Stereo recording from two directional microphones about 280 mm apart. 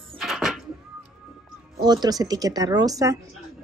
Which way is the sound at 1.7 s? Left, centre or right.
Centre.